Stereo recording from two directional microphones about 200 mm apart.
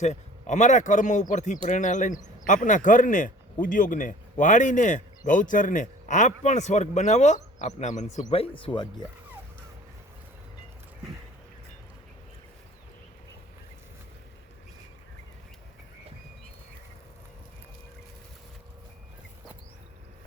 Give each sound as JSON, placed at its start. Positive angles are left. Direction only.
{"t": 0.0, "sound": "speech", "side_deg": 35}